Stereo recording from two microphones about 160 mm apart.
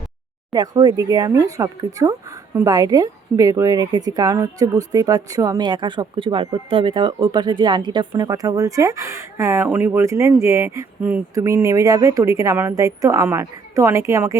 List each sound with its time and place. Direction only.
0.5 s a woman's voice: 25° right (ahead or behind)